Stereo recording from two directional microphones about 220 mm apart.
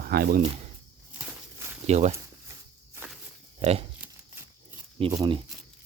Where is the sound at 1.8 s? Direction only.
30° right (ahead or behind).